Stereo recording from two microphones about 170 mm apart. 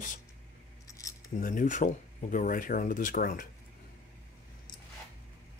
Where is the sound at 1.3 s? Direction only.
50° left (ahead or behind).